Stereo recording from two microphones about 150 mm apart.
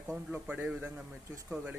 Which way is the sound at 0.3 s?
10° right (ahead or behind).